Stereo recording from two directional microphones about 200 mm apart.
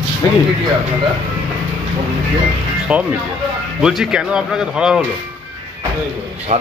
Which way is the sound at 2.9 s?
5° right (ahead or behind).